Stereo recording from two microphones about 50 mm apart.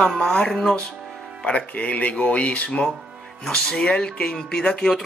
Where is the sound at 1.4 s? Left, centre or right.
Left.